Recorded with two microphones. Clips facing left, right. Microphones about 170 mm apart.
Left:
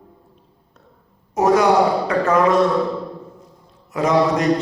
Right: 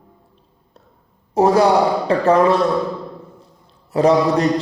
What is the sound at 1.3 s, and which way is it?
A man's voice, 30° right (ahead or behind).